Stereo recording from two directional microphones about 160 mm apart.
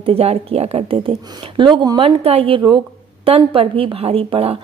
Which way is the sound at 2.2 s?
40° right (ahead or behind).